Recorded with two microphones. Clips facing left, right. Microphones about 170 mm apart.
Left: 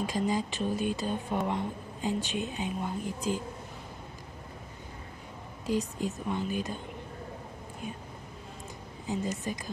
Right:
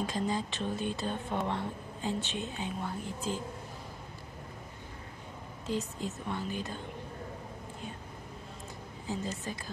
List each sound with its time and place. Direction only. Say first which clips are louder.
0.0 s a woman's voice: left 3 dB; 15° left (ahead or behind)
5.7 s a woman's voice: left 4 dB; 15° left (ahead or behind)
9.1 s a woman's voice: left 4 dB; 15° left (ahead or behind)